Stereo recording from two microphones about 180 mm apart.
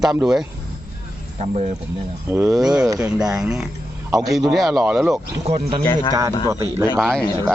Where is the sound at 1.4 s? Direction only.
35° right (ahead or behind).